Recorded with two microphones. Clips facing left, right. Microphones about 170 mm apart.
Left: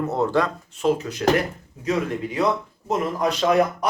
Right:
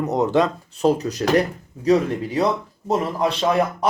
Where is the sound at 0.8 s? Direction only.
40° right (ahead or behind).